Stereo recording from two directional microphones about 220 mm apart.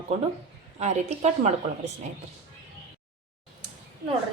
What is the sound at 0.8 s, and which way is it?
Speech, 30° right (ahead or behind).